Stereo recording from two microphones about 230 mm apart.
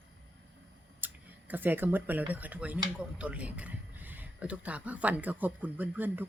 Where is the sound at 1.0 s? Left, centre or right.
Centre.